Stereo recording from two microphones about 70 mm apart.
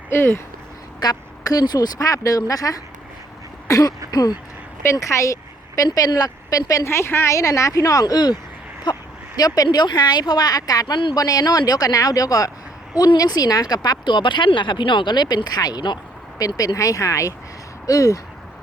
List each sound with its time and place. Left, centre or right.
0.1 s a woman's voice: left
1.0 s speech: left
2.0 s speech: left
3.7 s speech: left
4.1 s speech: left
4.8 s a woman's voice: left
6.8 s a woman's voice: left
7.3 s speech: left
16.4 s speech: left